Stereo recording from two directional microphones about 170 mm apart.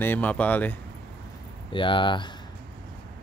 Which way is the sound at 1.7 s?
30° left (ahead or behind).